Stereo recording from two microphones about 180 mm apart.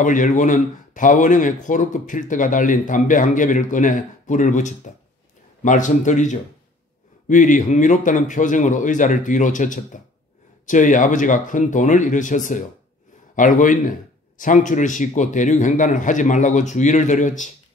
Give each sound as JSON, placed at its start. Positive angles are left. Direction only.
{"t": 0.0, "sound": "speech", "side_deg": 45}